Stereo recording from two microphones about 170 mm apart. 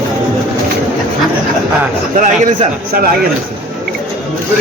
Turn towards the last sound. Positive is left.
turn(degrees=-55)  # may be behind; listen again after turning